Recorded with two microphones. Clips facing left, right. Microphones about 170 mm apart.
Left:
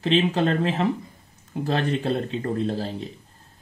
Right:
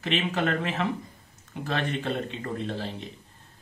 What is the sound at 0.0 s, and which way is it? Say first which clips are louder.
Speech: left 6 dB; 30° left (ahead or behind).